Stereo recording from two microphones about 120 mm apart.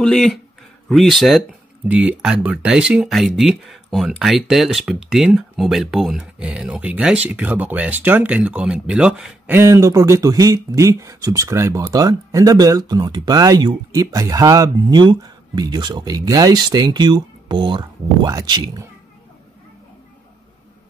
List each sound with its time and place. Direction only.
0.0 s speech: 5° left (ahead or behind)
1.9 s speech: 10° right (ahead or behind)
9.6 s speech: 25° right (ahead or behind)